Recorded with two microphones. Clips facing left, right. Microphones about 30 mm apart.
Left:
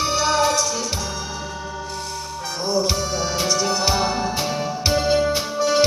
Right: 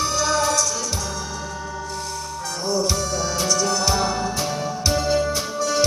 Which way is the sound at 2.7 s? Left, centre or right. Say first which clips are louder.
Left 1 dB; left.